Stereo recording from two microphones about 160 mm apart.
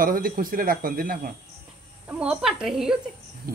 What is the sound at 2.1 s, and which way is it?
Speech, 5° right (ahead or behind).